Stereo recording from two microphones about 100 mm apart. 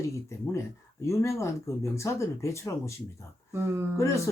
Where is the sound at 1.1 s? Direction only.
30° left (ahead or behind).